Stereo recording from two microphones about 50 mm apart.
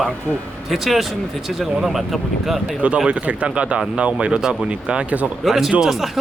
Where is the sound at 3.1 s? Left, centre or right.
Right.